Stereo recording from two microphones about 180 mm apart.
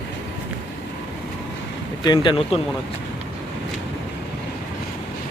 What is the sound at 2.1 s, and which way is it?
Speech, 30° left (ahead or behind).